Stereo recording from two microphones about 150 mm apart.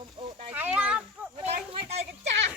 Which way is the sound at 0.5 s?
10° right (ahead or behind).